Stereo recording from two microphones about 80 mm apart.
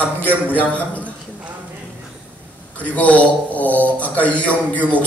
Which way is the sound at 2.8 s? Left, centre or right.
Centre.